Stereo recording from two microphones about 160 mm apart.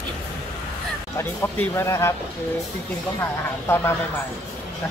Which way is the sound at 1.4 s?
15° left (ahead or behind).